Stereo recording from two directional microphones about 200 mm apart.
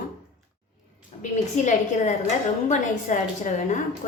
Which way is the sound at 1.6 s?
35° left (ahead or behind).